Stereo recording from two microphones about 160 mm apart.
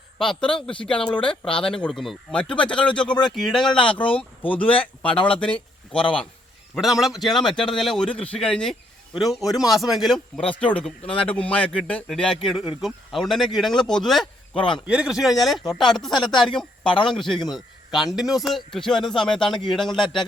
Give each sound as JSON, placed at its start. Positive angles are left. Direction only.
{"t": 0.2, "sound": "speech", "side_deg": 5}
{"t": 1.2, "sound": "speech", "side_deg": 30}
{"t": 1.5, "sound": "speech", "side_deg": 5}
{"t": 6.7, "sound": "speech", "side_deg": 0}
{"t": 14.5, "sound": "speech", "side_deg": 30}
{"t": 14.8, "sound": "speech", "side_deg": -5}
{"t": 16.1, "sound": "speech", "side_deg": 30}
{"t": 16.4, "sound": "speech", "side_deg": 5}
{"t": 17.3, "sound": "speech", "side_deg": 25}
{"t": 17.9, "sound": "speech", "side_deg": 0}